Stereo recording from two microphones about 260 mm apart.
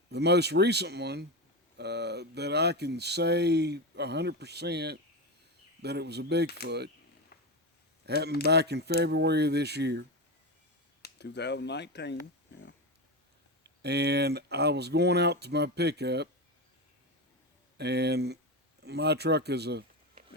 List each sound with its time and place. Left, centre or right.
0.1 s speech: right
8.0 s speech: right
11.0 s speech: left
13.8 s speech: right
17.7 s speech: right